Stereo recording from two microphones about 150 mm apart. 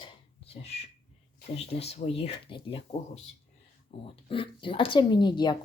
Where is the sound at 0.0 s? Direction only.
40° left (ahead or behind).